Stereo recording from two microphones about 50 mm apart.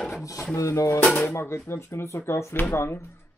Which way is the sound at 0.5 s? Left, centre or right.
Left.